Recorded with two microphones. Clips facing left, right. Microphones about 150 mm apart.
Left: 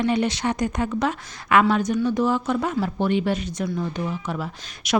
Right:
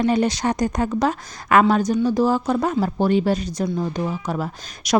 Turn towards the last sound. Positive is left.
turn(degrees=-40)  # may be behind; listen again after turning